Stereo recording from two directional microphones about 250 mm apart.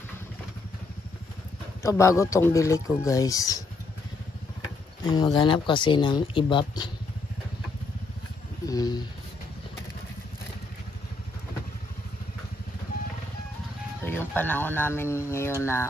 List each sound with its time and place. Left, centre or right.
1.8 s speech: centre
5.0 s speech: centre
8.6 s speech: centre
14.0 s speech: centre